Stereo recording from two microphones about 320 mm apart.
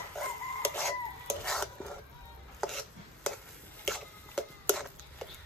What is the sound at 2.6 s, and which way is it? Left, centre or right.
Music, centre.